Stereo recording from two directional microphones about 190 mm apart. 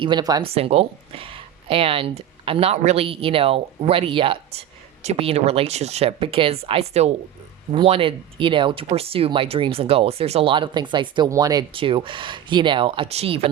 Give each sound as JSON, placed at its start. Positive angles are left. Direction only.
{"t": 0.0, "sound": "speech", "side_deg": -20}
{"t": 0.5, "sound": "speech", "side_deg": -30}